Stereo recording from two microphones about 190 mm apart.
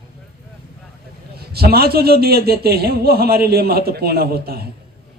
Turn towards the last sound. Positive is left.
turn(degrees=-55)  # may be behind; listen again after turning